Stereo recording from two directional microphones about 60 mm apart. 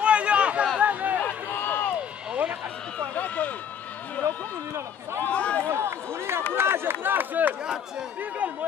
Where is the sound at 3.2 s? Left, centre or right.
Left.